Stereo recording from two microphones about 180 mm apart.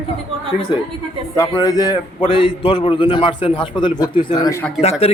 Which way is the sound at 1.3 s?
20° left (ahead or behind).